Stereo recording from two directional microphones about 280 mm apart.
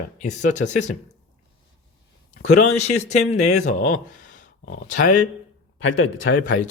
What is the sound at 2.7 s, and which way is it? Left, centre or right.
Speech, left.